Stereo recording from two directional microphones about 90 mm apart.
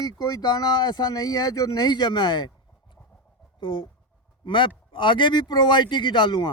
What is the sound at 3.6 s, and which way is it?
A man's voice, 70° left (ahead or behind).